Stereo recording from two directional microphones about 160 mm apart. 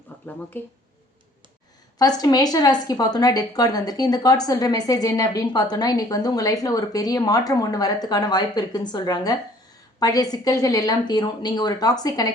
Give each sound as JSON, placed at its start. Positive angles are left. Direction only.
{"t": 0.1, "sound": "a sound", "side_deg": 10}
{"t": 0.5, "sound": "speech", "side_deg": 15}
{"t": 2.0, "sound": "a woman's voice", "side_deg": 25}